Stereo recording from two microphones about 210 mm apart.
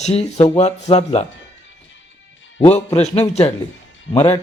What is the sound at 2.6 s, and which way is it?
Speech, 30° left (ahead or behind).